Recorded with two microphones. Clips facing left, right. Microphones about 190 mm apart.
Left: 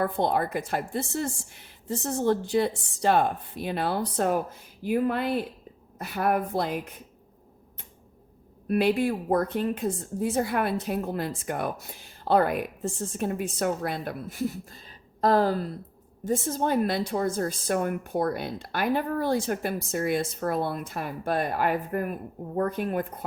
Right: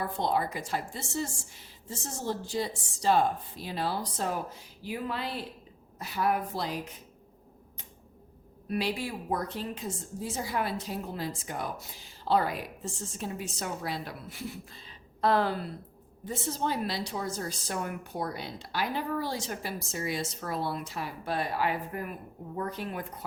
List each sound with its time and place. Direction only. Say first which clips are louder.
0.0 s a woman's voice: left 4 dB; 55° left (ahead or behind)
8.6 s a woman's voice: left 8 dB; 55° left (ahead or behind)